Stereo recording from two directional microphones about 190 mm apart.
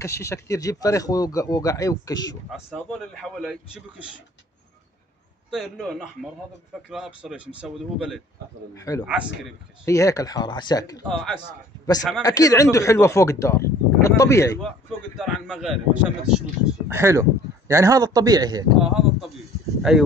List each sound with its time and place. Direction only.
0.0 s speech: 15° left (ahead or behind)
2.5 s a man's voice: centre (ahead or behind)
5.5 s a man's voice: centre (ahead or behind)
8.7 s speech: 15° left (ahead or behind)
9.0 s a man's voice: 5° right (ahead or behind)
9.8 s speech: 15° left (ahead or behind)
11.1 s a man's voice: 5° left (ahead or behind)
12.2 s speech: 15° left (ahead or behind)
14.6 s a man's voice: centre (ahead or behind)
16.9 s a man's voice: 15° right (ahead or behind)
18.9 s a man's voice: centre (ahead or behind)